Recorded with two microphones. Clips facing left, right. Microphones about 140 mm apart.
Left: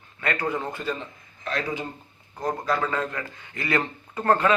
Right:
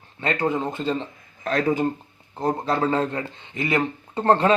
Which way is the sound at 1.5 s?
45° right (ahead or behind).